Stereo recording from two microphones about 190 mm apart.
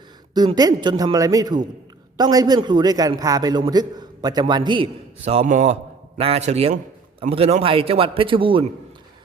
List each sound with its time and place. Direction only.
0.3 s a man's voice: 20° right (ahead or behind)